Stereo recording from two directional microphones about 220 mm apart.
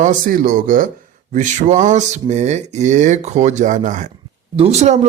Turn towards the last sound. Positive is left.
turn(degrees=-30)  # may be behind; listen again after turning